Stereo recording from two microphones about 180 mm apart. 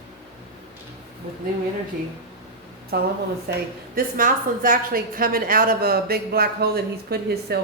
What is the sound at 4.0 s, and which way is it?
A woman's voice, 50° right (ahead or behind).